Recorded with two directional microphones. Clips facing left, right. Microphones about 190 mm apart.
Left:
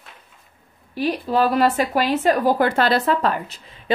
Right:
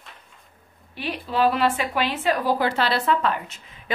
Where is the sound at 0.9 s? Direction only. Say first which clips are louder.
Left 6 dB; 40° left (ahead or behind).